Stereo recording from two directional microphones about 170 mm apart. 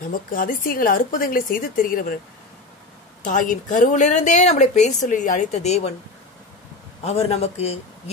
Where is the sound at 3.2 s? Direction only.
50° left (ahead or behind).